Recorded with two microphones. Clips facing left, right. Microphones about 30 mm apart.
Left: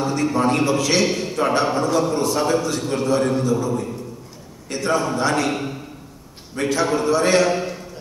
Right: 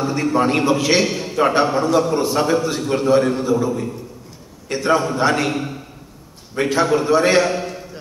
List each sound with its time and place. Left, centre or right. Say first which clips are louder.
0.0 s a man's voice: right 2 dB; centre
1.0 s a man's voice: right 2 dB; centre
5.5 s a man's voice: right 1 dB; centre
6.5 s a man's voice: right 3 dB; centre
7.4 s a man's voice: even; centre